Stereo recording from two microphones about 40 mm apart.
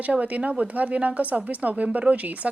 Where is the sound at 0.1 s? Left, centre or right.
Right.